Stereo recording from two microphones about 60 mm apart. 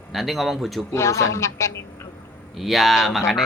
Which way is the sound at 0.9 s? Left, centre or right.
Left.